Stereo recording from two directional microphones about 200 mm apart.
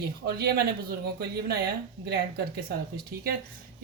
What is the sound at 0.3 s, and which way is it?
Speech, 55° right (ahead or behind).